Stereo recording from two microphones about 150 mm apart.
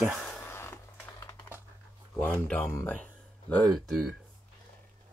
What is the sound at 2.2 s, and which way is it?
Speech, 10° left (ahead or behind).